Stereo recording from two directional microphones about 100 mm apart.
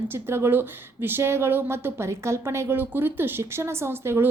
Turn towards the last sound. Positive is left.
turn(degrees=-25)  # may be behind; listen again after turning